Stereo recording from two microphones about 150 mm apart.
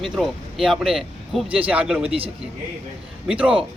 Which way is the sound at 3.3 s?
5° right (ahead or behind).